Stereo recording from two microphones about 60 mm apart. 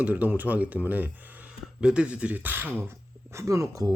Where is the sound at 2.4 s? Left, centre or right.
Right.